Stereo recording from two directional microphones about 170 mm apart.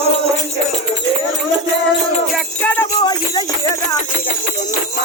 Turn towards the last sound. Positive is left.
turn(degrees=25)  # may be behind; listen again after turning